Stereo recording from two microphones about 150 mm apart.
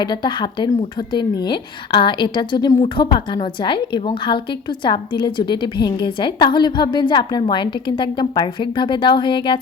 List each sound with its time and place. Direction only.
0.0 s a woman's voice: 30° left (ahead or behind)